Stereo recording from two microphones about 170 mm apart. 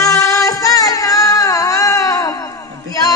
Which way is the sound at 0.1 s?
20° left (ahead or behind).